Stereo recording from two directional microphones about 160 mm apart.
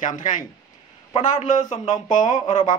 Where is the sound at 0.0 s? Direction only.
55° left (ahead or behind).